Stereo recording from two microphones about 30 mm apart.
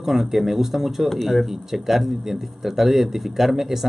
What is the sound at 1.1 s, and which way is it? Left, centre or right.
Speech, centre.